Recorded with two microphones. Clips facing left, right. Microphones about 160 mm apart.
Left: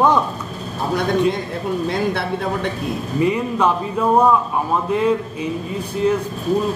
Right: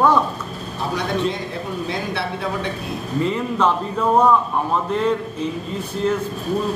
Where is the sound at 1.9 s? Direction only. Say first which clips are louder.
Left 4 dB; 50° left (ahead or behind).